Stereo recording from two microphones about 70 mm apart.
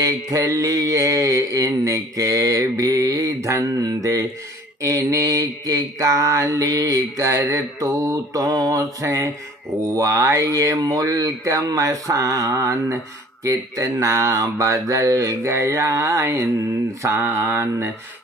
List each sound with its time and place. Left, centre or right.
0.0 s speech: right
17.0 s mantra: right